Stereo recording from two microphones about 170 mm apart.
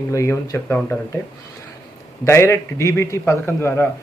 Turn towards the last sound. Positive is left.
turn(degrees=15)  # may be behind; listen again after turning